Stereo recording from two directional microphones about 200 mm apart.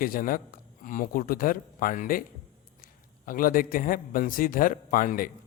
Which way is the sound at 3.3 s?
45° left (ahead or behind).